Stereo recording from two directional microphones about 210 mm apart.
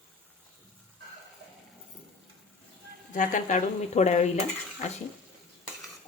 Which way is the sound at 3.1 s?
40° left (ahead or behind).